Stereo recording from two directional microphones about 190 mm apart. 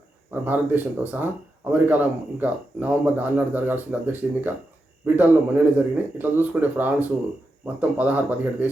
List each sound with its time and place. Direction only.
0.4 s speech: 10° right (ahead or behind)